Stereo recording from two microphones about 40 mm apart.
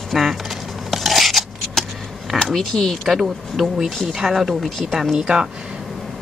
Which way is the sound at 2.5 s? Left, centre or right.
Centre.